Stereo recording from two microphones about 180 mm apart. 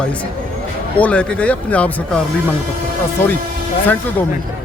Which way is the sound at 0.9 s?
5° left (ahead or behind).